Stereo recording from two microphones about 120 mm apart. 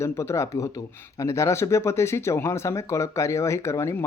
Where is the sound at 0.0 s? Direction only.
25° left (ahead or behind).